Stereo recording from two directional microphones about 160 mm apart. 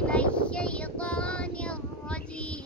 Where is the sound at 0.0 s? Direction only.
5° left (ahead or behind).